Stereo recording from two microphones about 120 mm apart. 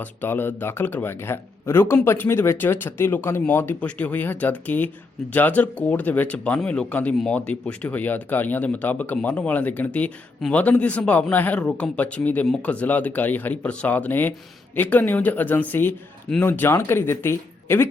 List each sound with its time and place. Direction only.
0.0 s speech: 15° left (ahead or behind)